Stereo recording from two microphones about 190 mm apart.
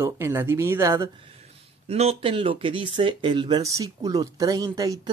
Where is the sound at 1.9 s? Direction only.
30° right (ahead or behind).